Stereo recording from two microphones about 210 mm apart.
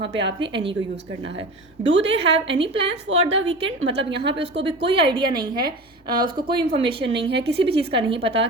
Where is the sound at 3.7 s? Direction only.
65° right (ahead or behind).